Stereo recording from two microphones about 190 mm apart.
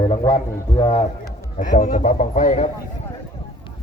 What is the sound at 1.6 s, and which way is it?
Speech, 45° left (ahead or behind).